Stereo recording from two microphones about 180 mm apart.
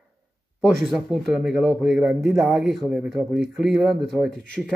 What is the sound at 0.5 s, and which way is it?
Speech, centre (ahead or behind).